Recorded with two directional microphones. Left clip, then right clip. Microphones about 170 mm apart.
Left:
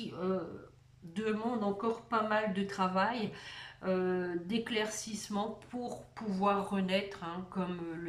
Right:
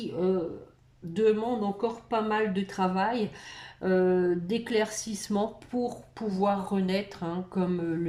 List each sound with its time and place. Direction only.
1.1 s speech: 25° right (ahead or behind)